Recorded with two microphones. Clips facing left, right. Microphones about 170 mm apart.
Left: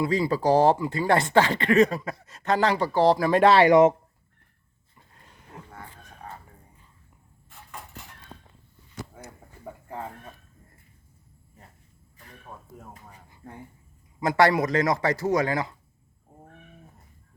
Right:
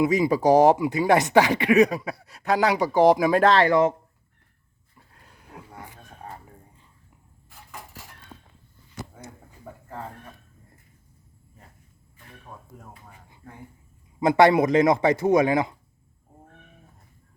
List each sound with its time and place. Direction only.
0.0 s speech: 15° right (ahead or behind)
3.3 s speech: 5° left (ahead or behind)
3.7 s speech: 20° left (ahead or behind)
4.9 s a sound: 5° right (ahead or behind)
13.4 s speech: 40° left (ahead or behind)
14.2 s a man's voice: 20° right (ahead or behind)